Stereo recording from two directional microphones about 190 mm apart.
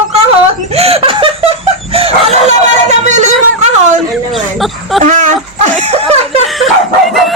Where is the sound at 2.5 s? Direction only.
40° right (ahead or behind).